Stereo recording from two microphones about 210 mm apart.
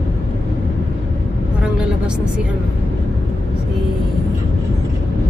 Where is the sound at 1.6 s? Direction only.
5° right (ahead or behind).